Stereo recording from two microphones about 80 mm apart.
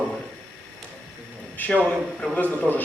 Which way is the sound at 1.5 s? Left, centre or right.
Left.